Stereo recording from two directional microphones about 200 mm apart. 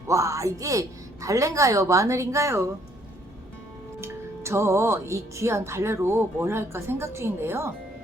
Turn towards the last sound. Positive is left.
turn(degrees=-15)  # may be behind; listen again after turning